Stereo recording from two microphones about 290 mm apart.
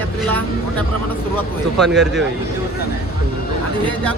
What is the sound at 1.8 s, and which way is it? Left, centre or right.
Speech, centre.